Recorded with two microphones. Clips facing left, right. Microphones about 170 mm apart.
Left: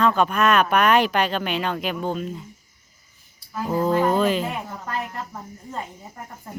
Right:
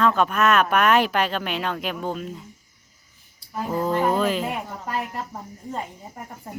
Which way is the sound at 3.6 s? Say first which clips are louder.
Left 2 dB; centre (ahead or behind).